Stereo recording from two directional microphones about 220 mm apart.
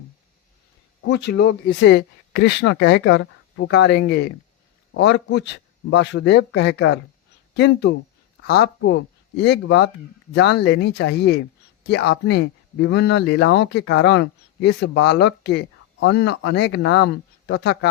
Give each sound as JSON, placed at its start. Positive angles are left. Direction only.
{"t": 1.0, "sound": "speech", "side_deg": 55}